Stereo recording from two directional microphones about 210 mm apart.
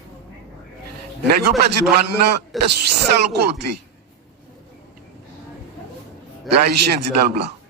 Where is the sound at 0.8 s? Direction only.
50° right (ahead or behind).